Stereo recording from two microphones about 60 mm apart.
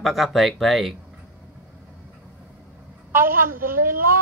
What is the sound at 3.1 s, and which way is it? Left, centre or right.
Speech, right.